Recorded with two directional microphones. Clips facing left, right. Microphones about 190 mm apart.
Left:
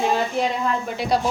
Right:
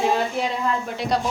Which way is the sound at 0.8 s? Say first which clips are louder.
Left 2 dB; 5° left (ahead or behind).